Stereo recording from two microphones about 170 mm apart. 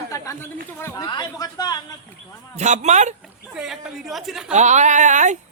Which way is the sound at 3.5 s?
5° right (ahead or behind).